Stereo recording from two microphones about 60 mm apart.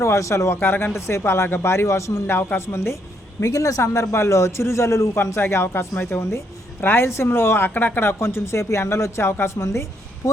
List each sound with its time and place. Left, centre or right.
0.0 s speech: left
0.9 s speech: left
3.4 s a man's voice: left
10.2 s speech: left